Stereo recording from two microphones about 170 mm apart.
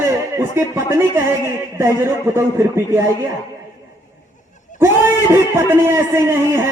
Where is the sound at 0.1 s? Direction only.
15° right (ahead or behind).